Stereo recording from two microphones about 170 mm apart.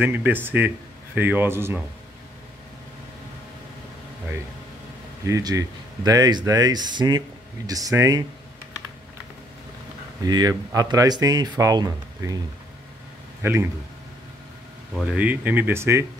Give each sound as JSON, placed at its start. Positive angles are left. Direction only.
{"t": 0.0, "sound": "speech", "side_deg": -10}
{"t": 5.2, "sound": "speech", "side_deg": -20}
{"t": 10.2, "sound": "speech", "side_deg": -20}
{"t": 13.4, "sound": "speech", "side_deg": -15}
{"t": 15.0, "sound": "speech", "side_deg": -10}